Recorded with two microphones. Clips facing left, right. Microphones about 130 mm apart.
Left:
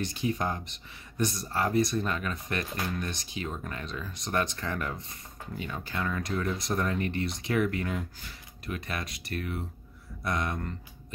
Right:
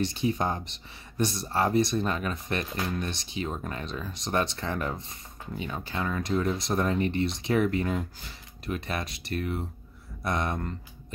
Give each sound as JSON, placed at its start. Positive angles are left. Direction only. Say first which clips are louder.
{"t": 0.0, "sound": "speech", "louder": "right 3 dB", "side_deg": -25}